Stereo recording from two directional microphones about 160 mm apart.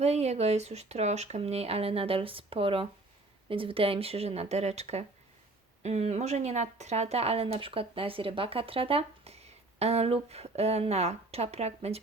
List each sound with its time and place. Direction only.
0.0 s speech: 40° right (ahead or behind)